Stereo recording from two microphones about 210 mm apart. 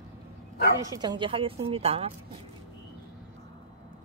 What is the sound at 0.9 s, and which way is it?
A woman's voice, 20° right (ahead or behind).